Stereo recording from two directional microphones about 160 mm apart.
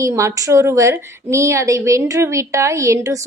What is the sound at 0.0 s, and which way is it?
A woman's voice, 20° right (ahead or behind).